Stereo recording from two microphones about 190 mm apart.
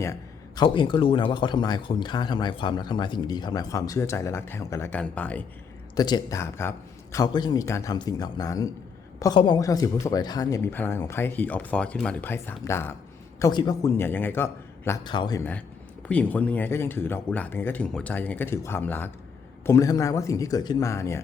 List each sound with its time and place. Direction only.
0.0 s a man's voice: 20° left (ahead or behind)
6.0 s speech: 20° left (ahead or behind)
15.0 s a man's voice: 25° left (ahead or behind)
16.0 s speech: 5° left (ahead or behind)